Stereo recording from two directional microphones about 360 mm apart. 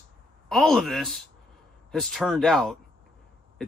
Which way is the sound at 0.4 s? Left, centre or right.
Centre.